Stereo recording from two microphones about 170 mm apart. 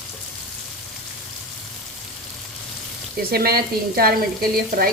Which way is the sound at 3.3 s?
65° right (ahead or behind).